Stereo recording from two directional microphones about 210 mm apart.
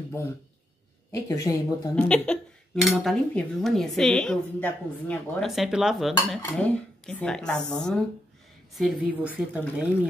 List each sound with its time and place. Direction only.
1.3 s speech: 15° left (ahead or behind)
2.0 s cutlery: 5° left (ahead or behind)